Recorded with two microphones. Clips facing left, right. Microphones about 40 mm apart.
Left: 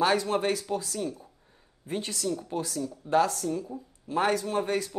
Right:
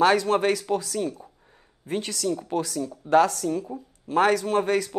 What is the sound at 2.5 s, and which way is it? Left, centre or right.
Speech, right.